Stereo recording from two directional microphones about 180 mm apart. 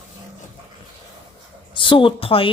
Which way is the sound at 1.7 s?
30° left (ahead or behind).